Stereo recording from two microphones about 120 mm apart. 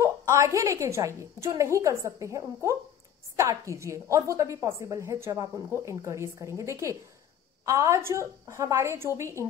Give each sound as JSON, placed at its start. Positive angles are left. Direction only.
{"t": 0.0, "sound": "a woman's voice", "side_deg": -25}